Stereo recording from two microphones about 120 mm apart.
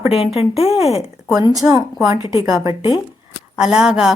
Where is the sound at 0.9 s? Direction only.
25° right (ahead or behind).